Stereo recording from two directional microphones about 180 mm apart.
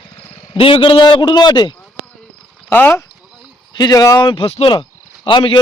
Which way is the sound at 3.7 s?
25° left (ahead or behind).